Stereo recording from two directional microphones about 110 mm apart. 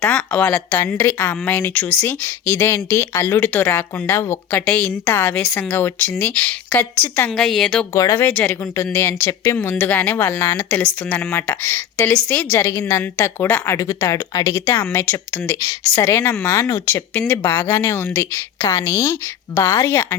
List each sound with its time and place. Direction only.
0.0 s speech: 10° left (ahead or behind)
4.6 s speech: 10° left (ahead or behind)
5.0 s speech: 20° left (ahead or behind)
7.3 s a woman's voice: centre (ahead or behind)
7.9 s speech: 30° left (ahead or behind)
8.2 s speech: 20° left (ahead or behind)
12.5 s speech: 25° left (ahead or behind)